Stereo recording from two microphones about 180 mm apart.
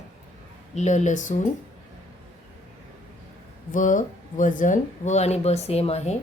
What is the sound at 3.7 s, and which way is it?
Speech, 45° left (ahead or behind).